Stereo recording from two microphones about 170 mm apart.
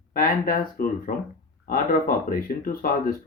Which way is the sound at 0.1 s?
60° left (ahead or behind).